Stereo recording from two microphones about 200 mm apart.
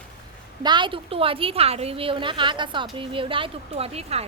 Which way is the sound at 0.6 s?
20° right (ahead or behind).